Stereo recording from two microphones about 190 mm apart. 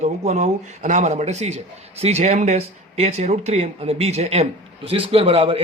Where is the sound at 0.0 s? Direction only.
35° right (ahead or behind).